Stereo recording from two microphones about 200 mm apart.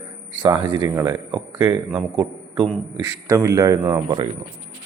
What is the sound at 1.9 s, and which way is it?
Speech, centre (ahead or behind).